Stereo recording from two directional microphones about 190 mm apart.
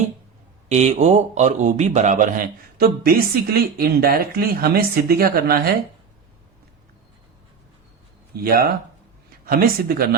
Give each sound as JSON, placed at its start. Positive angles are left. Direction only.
{"t": 0.7, "sound": "a man's voice", "side_deg": -35}
{"t": 8.3, "sound": "a man's voice", "side_deg": -55}